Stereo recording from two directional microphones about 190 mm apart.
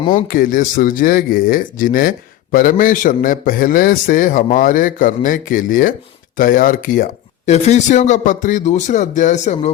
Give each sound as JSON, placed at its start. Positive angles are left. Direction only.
{"t": 0.1, "sound": "speech", "side_deg": 45}